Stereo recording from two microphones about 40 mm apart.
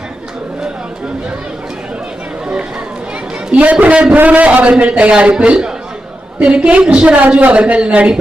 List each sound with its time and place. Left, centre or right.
3.5 s a man's voice: right
7.2 s a man's voice: right